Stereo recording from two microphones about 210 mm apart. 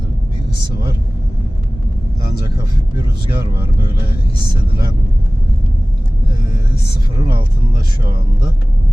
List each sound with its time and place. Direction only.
7.2 s speech: 20° right (ahead or behind)